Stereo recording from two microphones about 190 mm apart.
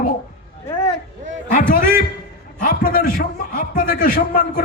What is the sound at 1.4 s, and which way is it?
A man's voice, 45° left (ahead or behind).